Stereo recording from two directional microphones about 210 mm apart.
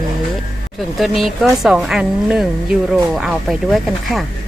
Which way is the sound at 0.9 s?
Centre (ahead or behind).